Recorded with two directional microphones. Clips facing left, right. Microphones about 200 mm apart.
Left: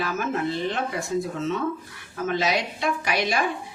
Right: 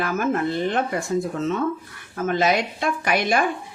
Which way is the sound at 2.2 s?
50° right (ahead or behind).